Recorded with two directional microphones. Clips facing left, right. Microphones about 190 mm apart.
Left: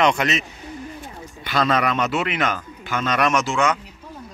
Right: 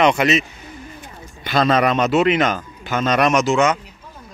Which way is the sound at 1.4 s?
25° right (ahead or behind).